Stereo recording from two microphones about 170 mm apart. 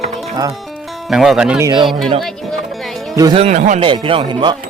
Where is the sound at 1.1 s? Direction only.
Centre (ahead or behind).